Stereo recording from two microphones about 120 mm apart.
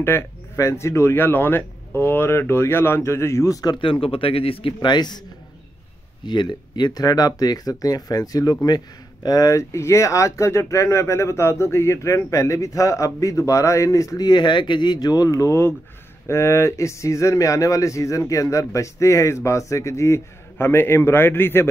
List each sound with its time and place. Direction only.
0.0 s speech: 20° left (ahead or behind)
3.7 s speech: 45° left (ahead or behind)
6.2 s speech: 40° left (ahead or behind); by 21.6 s 20° left (ahead or behind)